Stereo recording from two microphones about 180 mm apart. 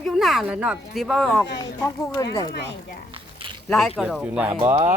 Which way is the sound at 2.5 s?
70° left (ahead or behind).